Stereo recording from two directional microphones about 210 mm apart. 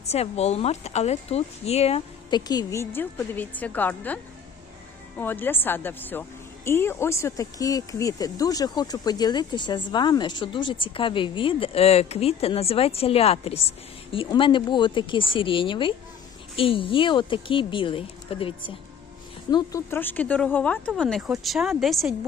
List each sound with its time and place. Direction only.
0.0 s speech: 30° left (ahead or behind); by 22.3 s centre (ahead or behind)